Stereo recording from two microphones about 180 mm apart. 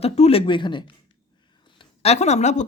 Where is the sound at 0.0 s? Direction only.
35° left (ahead or behind).